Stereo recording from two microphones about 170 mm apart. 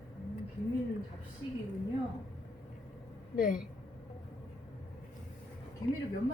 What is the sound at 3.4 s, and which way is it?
Speech, 55° left (ahead or behind).